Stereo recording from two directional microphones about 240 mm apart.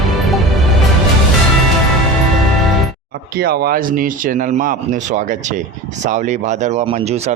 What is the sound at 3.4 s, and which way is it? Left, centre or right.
Speech, right.